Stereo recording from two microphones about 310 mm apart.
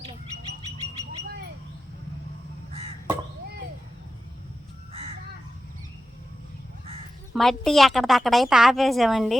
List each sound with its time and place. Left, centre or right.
2.7 s crow: centre
7.3 s a woman's voice: centre